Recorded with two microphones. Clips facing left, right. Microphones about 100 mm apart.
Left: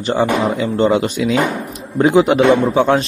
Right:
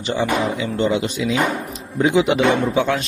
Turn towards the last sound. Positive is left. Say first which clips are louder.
# left 5 dB
turn(degrees=35)  # may be behind; listen again after turning